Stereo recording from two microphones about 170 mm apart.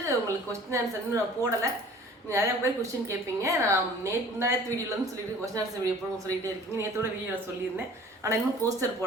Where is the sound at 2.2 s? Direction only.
15° right (ahead or behind).